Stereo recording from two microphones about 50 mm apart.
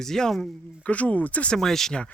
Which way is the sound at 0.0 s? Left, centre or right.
Centre.